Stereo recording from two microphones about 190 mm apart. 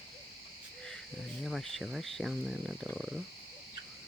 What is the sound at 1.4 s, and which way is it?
Speech, centre (ahead or behind).